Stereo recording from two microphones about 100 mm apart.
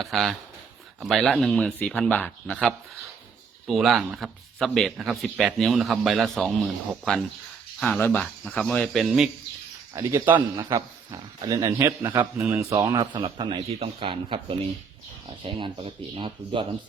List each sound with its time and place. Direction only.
0.0 s speech: centre (ahead or behind)
9.9 s speech: 30° right (ahead or behind)
10.7 s speech: 35° right (ahead or behind)
12.8 s speech: 35° right (ahead or behind)
13.2 s speech: 55° right (ahead or behind)
13.7 s speech: 85° right; by 14.4 s 60° right (ahead or behind)
15.4 s speech: 60° right (ahead or behind)